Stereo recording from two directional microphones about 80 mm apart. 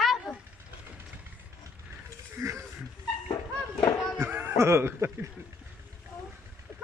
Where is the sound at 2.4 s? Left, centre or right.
Right.